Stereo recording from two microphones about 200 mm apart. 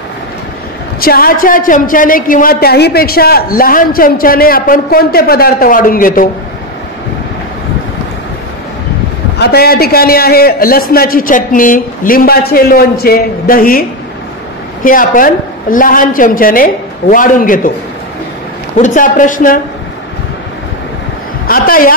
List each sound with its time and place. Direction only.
1.0 s speech: 45° left (ahead or behind)
9.4 s speech: 50° left (ahead or behind)
18.8 s speech: 40° left (ahead or behind)
21.5 s speech: 45° left (ahead or behind)